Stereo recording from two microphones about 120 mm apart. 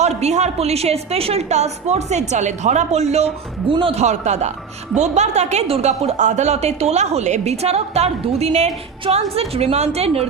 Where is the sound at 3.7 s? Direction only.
45° right (ahead or behind).